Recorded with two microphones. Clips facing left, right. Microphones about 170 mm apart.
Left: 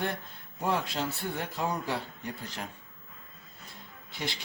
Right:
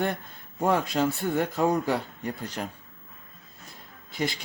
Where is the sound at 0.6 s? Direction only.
45° right (ahead or behind).